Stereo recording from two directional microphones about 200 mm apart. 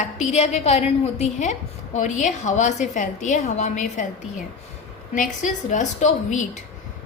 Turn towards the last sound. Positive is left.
turn(degrees=35)  # may be behind; listen again after turning